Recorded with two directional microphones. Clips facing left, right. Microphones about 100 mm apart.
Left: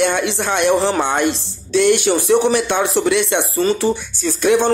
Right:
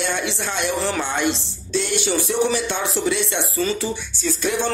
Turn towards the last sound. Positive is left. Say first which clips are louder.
# left 8 dB
turn(degrees=60)  # may be behind; listen again after turning